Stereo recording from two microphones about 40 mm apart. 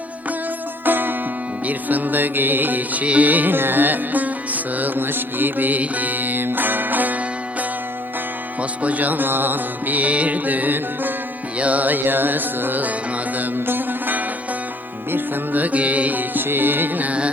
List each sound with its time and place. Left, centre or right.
0.9 s music: right
1.6 s music: right
4.9 s music: right
8.8 s music: right
11.5 s music: right
13.6 s sitar: right
15.5 s music: right